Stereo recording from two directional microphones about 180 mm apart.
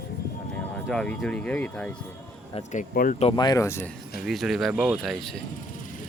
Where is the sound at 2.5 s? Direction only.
45° left (ahead or behind).